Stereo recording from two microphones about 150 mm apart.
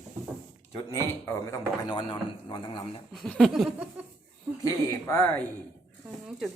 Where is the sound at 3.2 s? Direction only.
5° left (ahead or behind).